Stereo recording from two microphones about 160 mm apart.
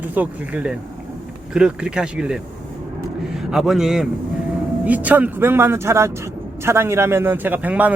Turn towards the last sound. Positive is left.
turn(degrees=-10)  # may be behind; listen again after turning